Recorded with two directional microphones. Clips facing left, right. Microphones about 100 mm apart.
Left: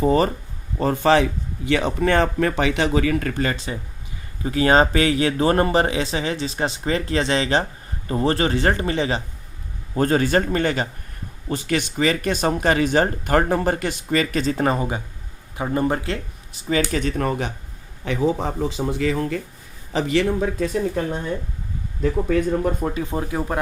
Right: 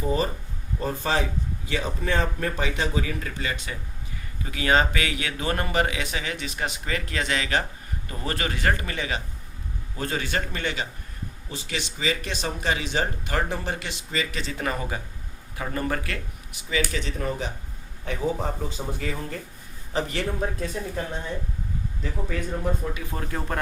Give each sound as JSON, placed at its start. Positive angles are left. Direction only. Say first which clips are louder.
{"t": 0.0, "sound": "a man's voice", "louder": "left 8 dB", "side_deg": 75}
{"t": 0.8, "sound": "a man's voice", "louder": "left 9 dB", "side_deg": 85}
{"t": 3.4, "sound": "speech", "louder": "left 7 dB", "side_deg": 35}
{"t": 9.9, "sound": "speech", "louder": "left 10 dB", "side_deg": 45}
{"t": 17.2, "sound": "a man's voice", "louder": "left 6 dB", "side_deg": 70}
{"t": 18.0, "sound": "speech", "louder": "left 6 dB", "side_deg": 90}
{"t": 22.3, "sound": "speech", "louder": "left 6 dB", "side_deg": 55}
{"t": 23.0, "sound": "speech", "louder": "left 9 dB", "side_deg": 25}
{"t": 23.3, "sound": "speech", "louder": "left 5 dB", "side_deg": 10}